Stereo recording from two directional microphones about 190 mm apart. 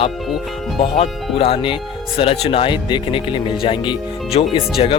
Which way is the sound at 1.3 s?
30° left (ahead or behind).